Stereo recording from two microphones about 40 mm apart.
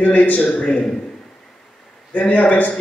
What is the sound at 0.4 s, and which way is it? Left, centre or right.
Speech, centre.